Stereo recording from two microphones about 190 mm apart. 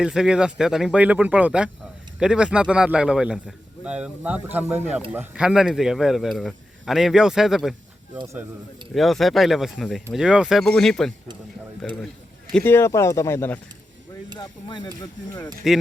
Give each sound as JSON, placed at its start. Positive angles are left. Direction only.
{"t": 0.0, "sound": "speech", "side_deg": -5}
{"t": 12.5, "sound": "speech", "side_deg": 10}
{"t": 15.6, "sound": "speech", "side_deg": 0}